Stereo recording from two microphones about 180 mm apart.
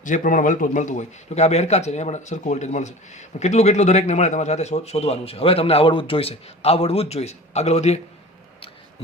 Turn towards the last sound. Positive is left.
turn(degrees=35)  # may be behind; listen again after turning